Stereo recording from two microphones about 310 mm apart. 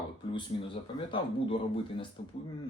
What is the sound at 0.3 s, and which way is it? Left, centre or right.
Speech, centre.